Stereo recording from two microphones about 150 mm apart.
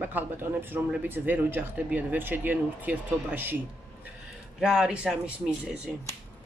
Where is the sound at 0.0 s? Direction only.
10° right (ahead or behind).